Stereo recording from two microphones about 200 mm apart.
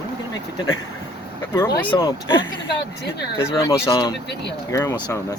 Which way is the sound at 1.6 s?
15° left (ahead or behind).